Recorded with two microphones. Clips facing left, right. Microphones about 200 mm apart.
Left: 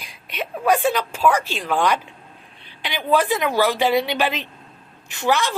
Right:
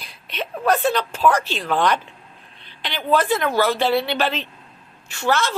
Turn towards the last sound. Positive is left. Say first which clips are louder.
# even
turn(degrees=15)  # may be behind; listen again after turning